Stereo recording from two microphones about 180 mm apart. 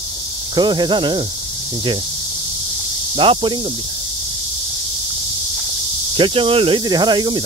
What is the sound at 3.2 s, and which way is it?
Speech, 30° right (ahead or behind).